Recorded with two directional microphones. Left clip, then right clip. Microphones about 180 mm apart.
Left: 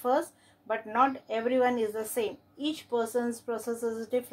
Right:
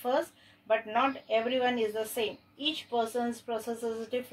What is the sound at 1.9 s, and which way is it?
Speech, 45° left (ahead or behind).